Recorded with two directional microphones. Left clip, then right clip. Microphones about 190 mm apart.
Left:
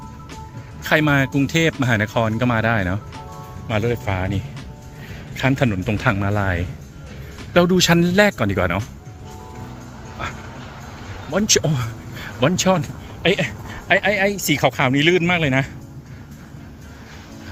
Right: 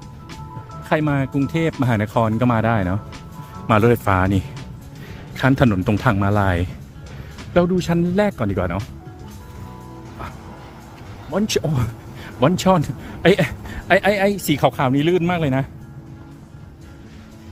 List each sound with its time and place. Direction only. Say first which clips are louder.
0.9 s speech: left 3 dB; 5° right (ahead or behind)
3.7 s speech: right 7 dB; 40° right (ahead or behind); by 6.7 s 20° right (ahead or behind)
7.5 s speech: left 3 dB; 5° right (ahead or behind)
11.3 s speech: left 3 dB; 15° right (ahead or behind)
12.8 s speech: right 3 dB; 35° right (ahead or behind); by 15.6 s 10° right (ahead or behind)